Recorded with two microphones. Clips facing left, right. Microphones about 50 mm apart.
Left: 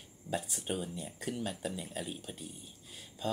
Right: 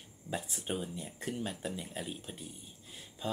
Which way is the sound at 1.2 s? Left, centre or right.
Right.